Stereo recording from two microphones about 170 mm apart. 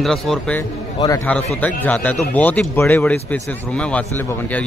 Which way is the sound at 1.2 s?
10° left (ahead or behind).